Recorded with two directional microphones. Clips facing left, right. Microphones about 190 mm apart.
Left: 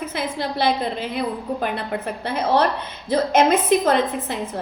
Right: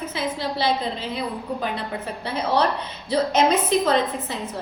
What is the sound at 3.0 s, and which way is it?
A woman's voice, 50° left (ahead or behind).